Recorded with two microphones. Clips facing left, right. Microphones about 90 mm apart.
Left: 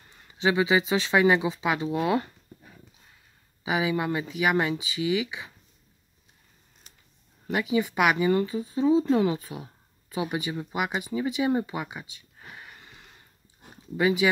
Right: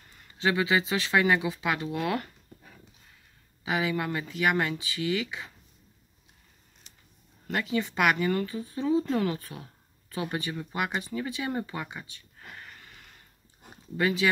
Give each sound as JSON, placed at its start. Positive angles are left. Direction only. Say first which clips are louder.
{"t": 0.3, "sound": "speech", "louder": "left 3 dB", "side_deg": 20}
{"t": 7.4, "sound": "speech", "louder": "left 4 dB", "side_deg": 10}